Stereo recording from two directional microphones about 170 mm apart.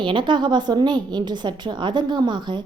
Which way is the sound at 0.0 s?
30° right (ahead or behind).